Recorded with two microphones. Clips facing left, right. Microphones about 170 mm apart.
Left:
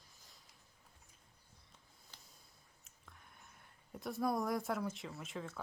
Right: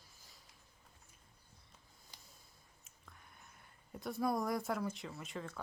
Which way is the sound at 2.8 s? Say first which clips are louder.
Even; centre (ahead or behind).